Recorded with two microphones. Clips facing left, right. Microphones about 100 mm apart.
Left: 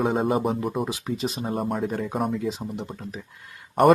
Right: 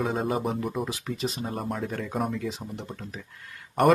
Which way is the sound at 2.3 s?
15° left (ahead or behind).